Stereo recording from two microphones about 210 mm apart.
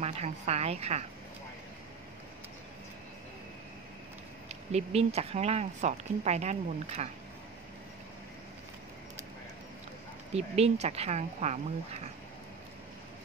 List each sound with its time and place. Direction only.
0.0 s speech: 30° right (ahead or behind)
4.7 s speech: 30° right (ahead or behind)
10.3 s speech: 30° right (ahead or behind)